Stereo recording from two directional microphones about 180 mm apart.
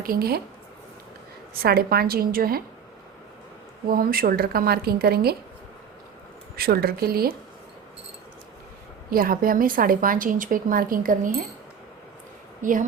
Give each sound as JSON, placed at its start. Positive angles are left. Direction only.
{"t": 0.0, "sound": "a woman's voice", "side_deg": -55}
{"t": 1.5, "sound": "a woman's voice", "side_deg": -60}
{"t": 3.8, "sound": "a woman's voice", "side_deg": -55}
{"t": 6.6, "sound": "a woman's voice", "side_deg": -60}
{"t": 9.0, "sound": "a woman's voice", "side_deg": -55}
{"t": 12.6, "sound": "a woman's voice", "side_deg": -45}